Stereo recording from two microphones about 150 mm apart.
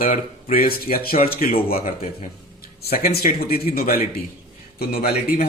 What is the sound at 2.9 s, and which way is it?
A man's voice, 90° left.